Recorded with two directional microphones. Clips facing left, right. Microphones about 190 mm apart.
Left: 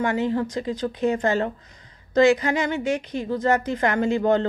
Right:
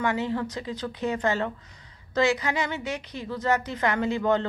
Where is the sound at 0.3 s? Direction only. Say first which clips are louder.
Left 5 dB; 45° left (ahead or behind).